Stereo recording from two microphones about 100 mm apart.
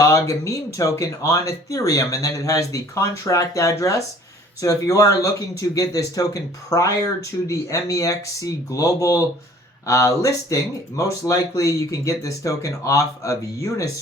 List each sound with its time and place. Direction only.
0.1 s speech: 35° left (ahead or behind)